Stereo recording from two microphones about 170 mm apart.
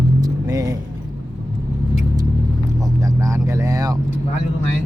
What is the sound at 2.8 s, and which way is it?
Vehicle, 20° right (ahead or behind).